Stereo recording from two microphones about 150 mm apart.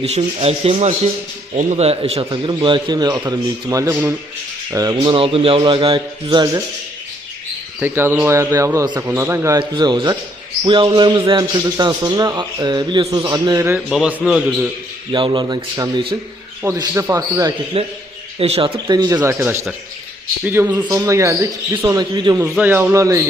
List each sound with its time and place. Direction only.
0.0 s rub: 40° right (ahead or behind)
2.5 s a man's voice: 30° right (ahead or behind)
4.9 s a man's voice: 35° right (ahead or behind)
7.8 s a man's voice: 15° right (ahead or behind)
9.6 s a man's voice: 30° right (ahead or behind)
13.9 s a man's voice: 5° right (ahead or behind)
15.1 s a man's voice: 30° right (ahead or behind)
16.6 s a man's voice: 20° right (ahead or behind)
17.7 s a man's voice: 40° right (ahead or behind)
22.4 s a man's voice: 15° right (ahead or behind)